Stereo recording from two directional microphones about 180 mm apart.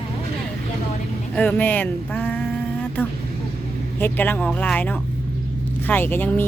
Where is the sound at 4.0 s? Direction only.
10° left (ahead or behind).